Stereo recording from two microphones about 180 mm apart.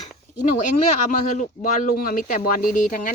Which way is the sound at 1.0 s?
45° left (ahead or behind).